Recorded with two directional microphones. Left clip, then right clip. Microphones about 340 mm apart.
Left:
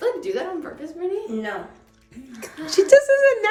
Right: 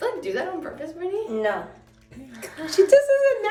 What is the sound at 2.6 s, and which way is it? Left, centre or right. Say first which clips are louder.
Speech: left 2 dB; left.